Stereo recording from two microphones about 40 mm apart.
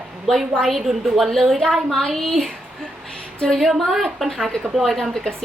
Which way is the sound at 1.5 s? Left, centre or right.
Centre.